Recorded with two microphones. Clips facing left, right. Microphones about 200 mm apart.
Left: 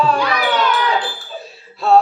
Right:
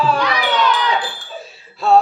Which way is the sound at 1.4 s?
Centre (ahead or behind).